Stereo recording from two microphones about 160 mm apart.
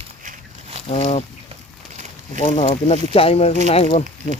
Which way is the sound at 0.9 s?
40° left (ahead or behind).